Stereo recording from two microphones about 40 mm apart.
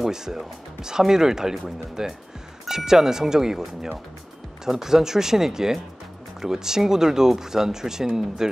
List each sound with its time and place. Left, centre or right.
0.0 s speech: centre